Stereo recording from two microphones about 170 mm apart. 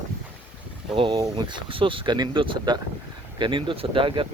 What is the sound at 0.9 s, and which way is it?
Speech, 30° right (ahead or behind).